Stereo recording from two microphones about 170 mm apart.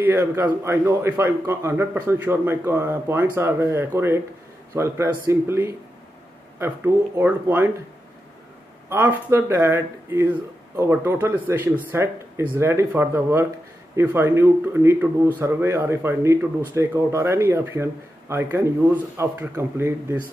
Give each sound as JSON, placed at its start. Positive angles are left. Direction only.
{"t": 0.0, "sound": "speech", "side_deg": -15}
{"t": 8.8, "sound": "speech", "side_deg": -10}